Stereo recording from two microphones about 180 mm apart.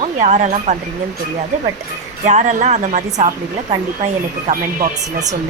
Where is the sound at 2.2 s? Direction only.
40° right (ahead or behind).